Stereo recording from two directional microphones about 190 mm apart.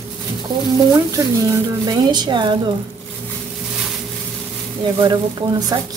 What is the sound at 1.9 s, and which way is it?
Speech, 20° right (ahead or behind).